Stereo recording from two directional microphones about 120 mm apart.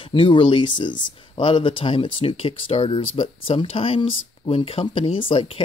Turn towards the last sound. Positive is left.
turn(degrees=45)  # may be behind; listen again after turning